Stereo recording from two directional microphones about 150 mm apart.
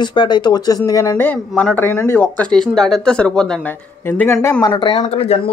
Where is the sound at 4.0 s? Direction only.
15° left (ahead or behind).